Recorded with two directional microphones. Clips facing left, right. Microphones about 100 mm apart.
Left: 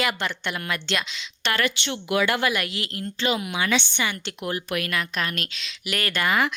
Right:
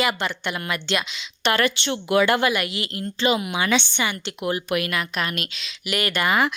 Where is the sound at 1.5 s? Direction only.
30° right (ahead or behind).